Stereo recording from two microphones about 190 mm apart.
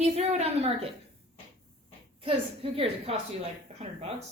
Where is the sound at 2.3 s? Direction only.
30° right (ahead or behind).